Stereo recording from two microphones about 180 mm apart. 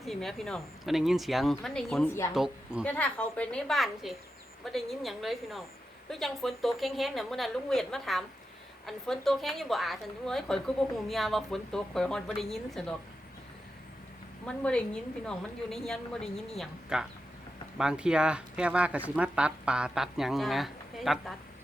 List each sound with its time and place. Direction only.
0.0 s a woman's voice: centre (ahead or behind)
14.4 s a woman's voice: 5° left (ahead or behind)